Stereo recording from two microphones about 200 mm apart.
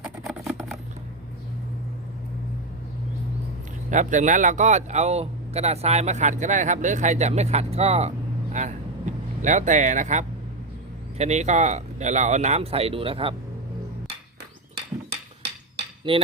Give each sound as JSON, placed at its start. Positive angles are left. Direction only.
{"t": 0.0, "sound": "a sound", "side_deg": -5}
{"t": 3.9, "sound": "speech", "side_deg": -40}
{"t": 9.1, "sound": "vehicle", "side_deg": -40}
{"t": 9.4, "sound": "speech", "side_deg": -35}
{"t": 16.1, "sound": "cutlery", "side_deg": -25}